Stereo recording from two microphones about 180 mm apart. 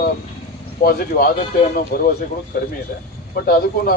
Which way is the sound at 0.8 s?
55° left (ahead or behind).